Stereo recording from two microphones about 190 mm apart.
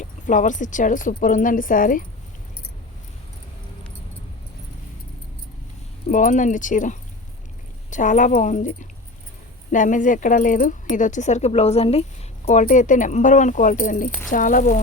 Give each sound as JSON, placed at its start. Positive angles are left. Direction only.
{"t": 0.0, "sound": "speech", "side_deg": 40}
{"t": 6.1, "sound": "speech", "side_deg": 45}